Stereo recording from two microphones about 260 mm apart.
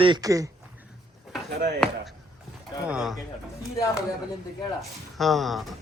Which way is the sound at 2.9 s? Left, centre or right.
Centre.